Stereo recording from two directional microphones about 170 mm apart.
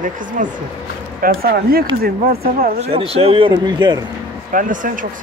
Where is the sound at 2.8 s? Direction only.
35° right (ahead or behind).